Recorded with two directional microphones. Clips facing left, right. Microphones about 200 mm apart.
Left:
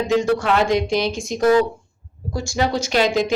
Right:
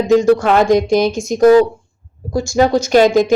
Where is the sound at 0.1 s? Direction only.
40° right (ahead or behind).